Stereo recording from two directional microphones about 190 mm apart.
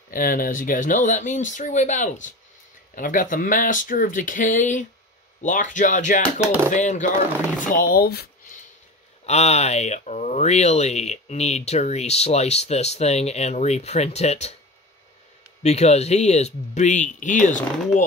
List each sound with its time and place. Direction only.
0.1 s speech: 50° left (ahead or behind)
9.2 s speech: 35° left (ahead or behind)
15.6 s speech: 35° left (ahead or behind)